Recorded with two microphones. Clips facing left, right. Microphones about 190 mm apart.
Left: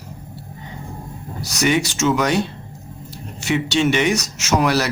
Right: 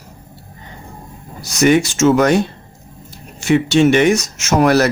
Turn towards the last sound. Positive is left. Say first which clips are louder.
# right 5 dB
turn(degrees=-50)  # may be behind; listen again after turning